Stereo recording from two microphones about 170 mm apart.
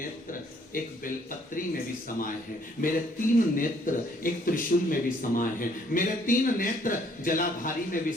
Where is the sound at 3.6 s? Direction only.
55° left (ahead or behind).